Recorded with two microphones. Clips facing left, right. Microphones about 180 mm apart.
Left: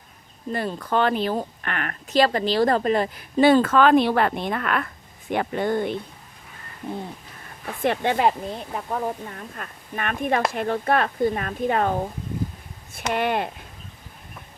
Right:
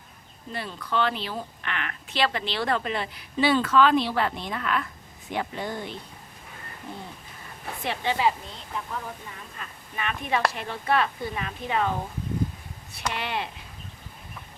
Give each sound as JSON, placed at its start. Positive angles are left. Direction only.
{"t": 0.5, "sound": "speech", "side_deg": 45}
{"t": 7.8, "sound": "speech", "side_deg": 50}